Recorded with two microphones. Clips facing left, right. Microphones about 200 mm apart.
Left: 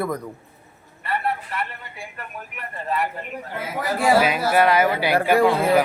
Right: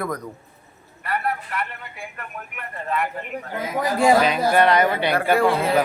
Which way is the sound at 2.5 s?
35° left (ahead or behind).